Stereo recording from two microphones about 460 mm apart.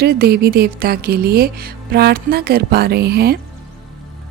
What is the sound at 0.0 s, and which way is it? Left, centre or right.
Speech, centre.